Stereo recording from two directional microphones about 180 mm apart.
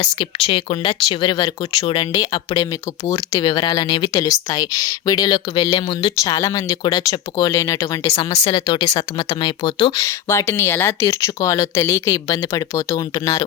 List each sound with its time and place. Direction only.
0.0 s speech: 35° left (ahead or behind)
10.0 s speech: 15° left (ahead or behind)